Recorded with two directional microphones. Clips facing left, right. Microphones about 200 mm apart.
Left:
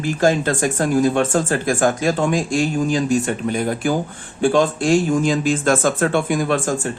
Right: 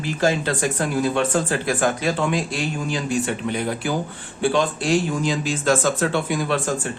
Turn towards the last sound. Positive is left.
turn(degrees=45)  # may be behind; listen again after turning